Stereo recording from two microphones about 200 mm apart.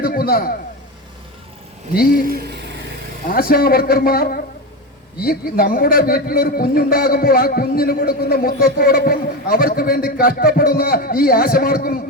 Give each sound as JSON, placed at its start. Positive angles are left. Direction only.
{"t": 0.0, "sound": "a man's voice", "side_deg": 45}
{"t": 2.2, "sound": "a sound", "side_deg": -50}
{"t": 3.2, "sound": "a man's voice", "side_deg": 45}